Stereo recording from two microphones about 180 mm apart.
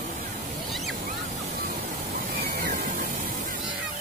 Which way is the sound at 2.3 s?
60° right (ahead or behind).